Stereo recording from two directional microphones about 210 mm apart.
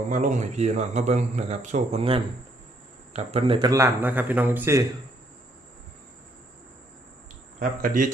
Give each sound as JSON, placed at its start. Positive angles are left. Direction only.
{"t": 0.1, "sound": "a man's voice", "side_deg": -35}
{"t": 7.6, "sound": "a man's voice", "side_deg": -40}